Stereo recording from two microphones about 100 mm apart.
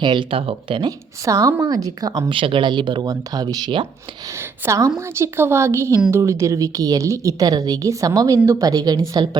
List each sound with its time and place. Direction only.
0.0 s speech: 50° right (ahead or behind)
0.8 s a woman's voice: 35° right (ahead or behind)
2.3 s speech: 60° right (ahead or behind)
4.6 s a woman's voice: 30° right (ahead or behind)